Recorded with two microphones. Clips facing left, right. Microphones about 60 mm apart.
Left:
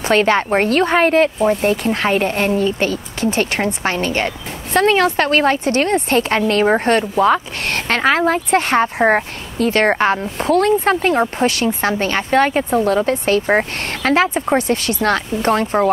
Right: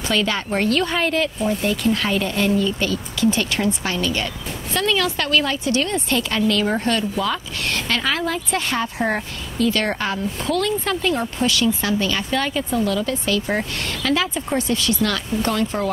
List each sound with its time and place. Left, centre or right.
0.1 s speech: left